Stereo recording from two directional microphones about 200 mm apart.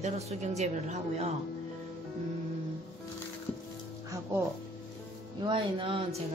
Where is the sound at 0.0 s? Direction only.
35° right (ahead or behind).